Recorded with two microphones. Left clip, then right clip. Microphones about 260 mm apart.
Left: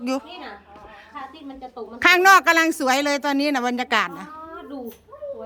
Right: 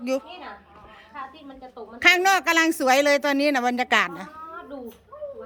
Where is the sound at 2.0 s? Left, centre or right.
Centre.